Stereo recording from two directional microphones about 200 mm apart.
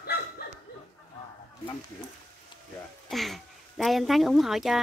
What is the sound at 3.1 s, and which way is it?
Speech, centre (ahead or behind).